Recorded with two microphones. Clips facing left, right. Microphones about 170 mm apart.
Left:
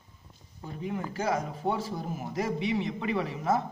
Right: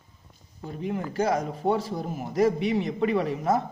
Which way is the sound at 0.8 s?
35° right (ahead or behind).